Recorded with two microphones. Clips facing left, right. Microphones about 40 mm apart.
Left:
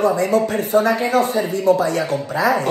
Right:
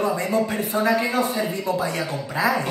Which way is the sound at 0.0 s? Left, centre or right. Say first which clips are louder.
Left 5 dB; left.